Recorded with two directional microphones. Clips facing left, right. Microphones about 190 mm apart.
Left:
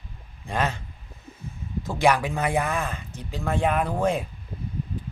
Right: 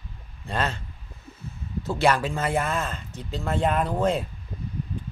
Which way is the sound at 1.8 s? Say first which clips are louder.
Left 1 dB; 15° left (ahead or behind).